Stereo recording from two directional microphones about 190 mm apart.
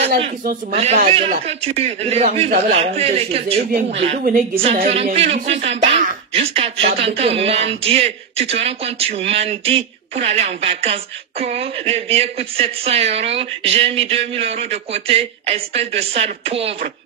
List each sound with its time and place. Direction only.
0.4 s speech: 50° right (ahead or behind)
0.7 s speech: 35° right (ahead or behind)